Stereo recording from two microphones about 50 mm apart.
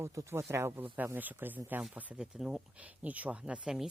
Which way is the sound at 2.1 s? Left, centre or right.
Centre.